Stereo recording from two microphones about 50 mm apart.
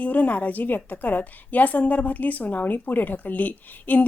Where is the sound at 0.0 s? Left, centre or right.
Left.